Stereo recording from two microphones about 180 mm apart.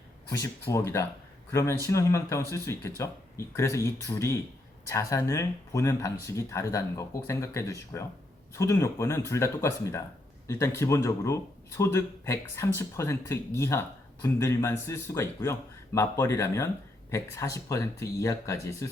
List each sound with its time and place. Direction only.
0.3 s speech: 15° left (ahead or behind)